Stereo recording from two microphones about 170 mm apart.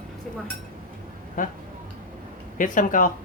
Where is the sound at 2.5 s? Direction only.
50° left (ahead or behind).